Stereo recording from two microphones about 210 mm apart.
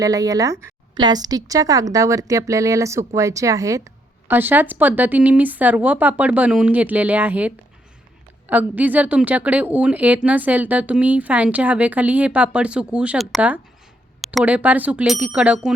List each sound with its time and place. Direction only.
0.0 s a woman's voice: 15° right (ahead or behind)